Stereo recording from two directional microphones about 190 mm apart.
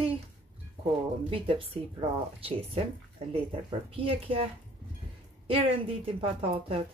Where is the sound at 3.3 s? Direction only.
30° right (ahead or behind).